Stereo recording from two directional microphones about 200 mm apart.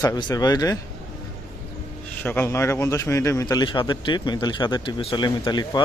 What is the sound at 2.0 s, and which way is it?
A man's voice, 10° left (ahead or behind).